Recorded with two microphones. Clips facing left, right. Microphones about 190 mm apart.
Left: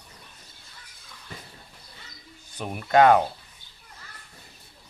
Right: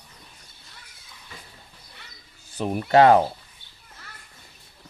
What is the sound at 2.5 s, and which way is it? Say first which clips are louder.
Speech: right 2 dB; 35° right (ahead or behind).